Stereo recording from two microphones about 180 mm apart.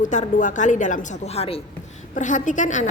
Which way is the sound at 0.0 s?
45° left (ahead or behind).